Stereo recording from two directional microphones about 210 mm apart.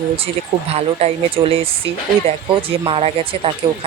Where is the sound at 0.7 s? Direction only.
30° right (ahead or behind).